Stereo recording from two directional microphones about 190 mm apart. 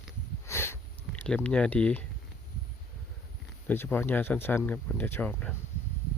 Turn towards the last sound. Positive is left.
turn(degrees=10)  # may be behind; listen again after turning